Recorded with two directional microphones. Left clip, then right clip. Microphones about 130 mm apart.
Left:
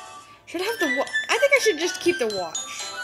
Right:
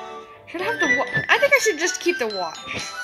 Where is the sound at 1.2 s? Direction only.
5° left (ahead or behind).